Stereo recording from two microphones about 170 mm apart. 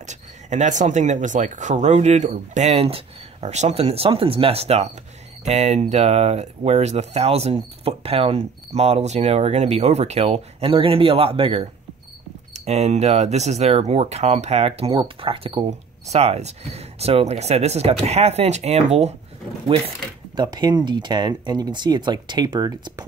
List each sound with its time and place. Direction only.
0.0 s speech: 45° right (ahead or behind); by 23.0 s 25° right (ahead or behind)